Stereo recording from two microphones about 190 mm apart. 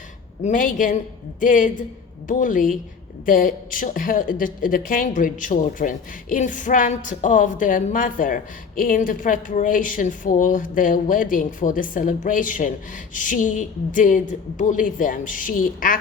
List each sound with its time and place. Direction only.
0.4 s a woman's voice: 45° left (ahead or behind)